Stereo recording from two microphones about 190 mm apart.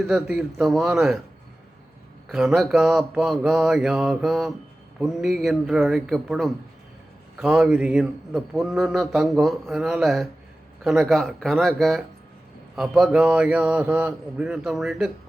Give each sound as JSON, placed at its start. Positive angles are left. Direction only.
{"t": 0.0, "sound": "a man's voice", "side_deg": -5}
{"t": 2.3, "sound": "a man's voice", "side_deg": 0}